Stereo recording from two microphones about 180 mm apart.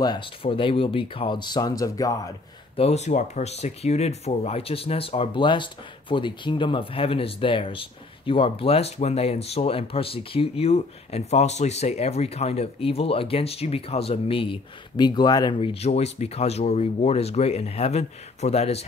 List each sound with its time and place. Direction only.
0.0 s speech: 25° left (ahead or behind)
2.7 s speech: 35° left (ahead or behind)